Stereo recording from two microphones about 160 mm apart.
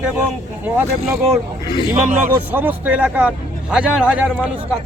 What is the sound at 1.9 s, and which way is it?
Speech, 10° right (ahead or behind).